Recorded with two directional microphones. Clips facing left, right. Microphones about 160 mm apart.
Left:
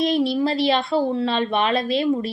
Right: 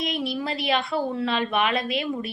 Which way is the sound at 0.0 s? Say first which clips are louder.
Left 8 dB; 35° left (ahead or behind).